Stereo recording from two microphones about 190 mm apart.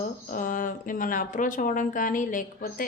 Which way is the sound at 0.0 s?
45° left (ahead or behind).